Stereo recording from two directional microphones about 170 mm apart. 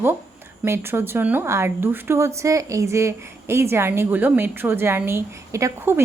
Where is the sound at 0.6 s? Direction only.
15° right (ahead or behind).